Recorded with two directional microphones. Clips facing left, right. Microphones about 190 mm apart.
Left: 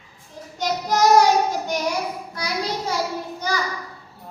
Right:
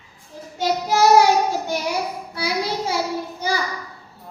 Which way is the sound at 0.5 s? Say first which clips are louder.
Right 2 dB; 5° right (ahead or behind).